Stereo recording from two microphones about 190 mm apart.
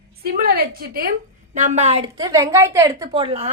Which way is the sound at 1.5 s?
40° right (ahead or behind).